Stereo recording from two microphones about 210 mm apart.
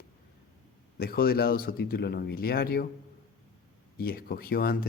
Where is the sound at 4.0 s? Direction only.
45° left (ahead or behind).